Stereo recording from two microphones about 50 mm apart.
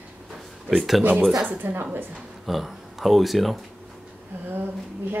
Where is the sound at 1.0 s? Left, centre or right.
Right.